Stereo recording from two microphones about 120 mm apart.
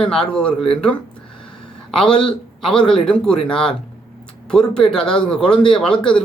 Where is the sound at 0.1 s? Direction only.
5° left (ahead or behind).